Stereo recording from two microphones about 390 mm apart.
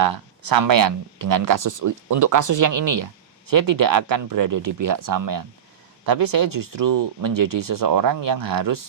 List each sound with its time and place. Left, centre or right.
0.0 s speech: right